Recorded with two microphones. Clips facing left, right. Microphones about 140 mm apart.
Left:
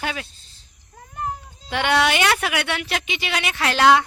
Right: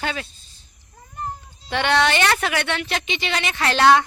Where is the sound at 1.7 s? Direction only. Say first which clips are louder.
Even; 10° left (ahead or behind).